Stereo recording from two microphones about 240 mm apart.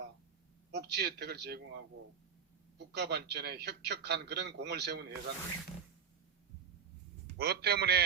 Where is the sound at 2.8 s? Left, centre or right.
Right.